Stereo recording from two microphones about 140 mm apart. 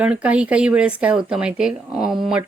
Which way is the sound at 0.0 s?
10° right (ahead or behind).